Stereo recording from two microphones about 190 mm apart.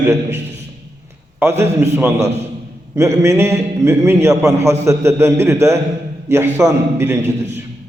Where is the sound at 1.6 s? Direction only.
15° right (ahead or behind).